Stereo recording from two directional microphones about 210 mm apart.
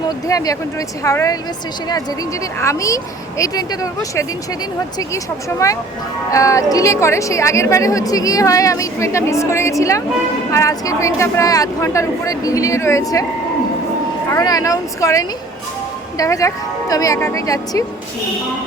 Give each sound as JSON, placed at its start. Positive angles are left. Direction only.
{"t": 0.3, "sound": "a woman's voice", "side_deg": 15}
{"t": 2.6, "sound": "a woman's voice", "side_deg": 15}
{"t": 14.3, "sound": "a woman's voice", "side_deg": 15}